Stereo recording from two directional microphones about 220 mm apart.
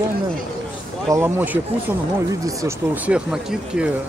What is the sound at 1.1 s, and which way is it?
Speech, 10° right (ahead or behind).